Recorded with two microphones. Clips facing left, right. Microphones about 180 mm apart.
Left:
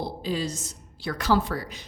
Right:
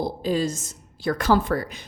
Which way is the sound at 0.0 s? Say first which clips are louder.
Right 5 dB; 45° right (ahead or behind).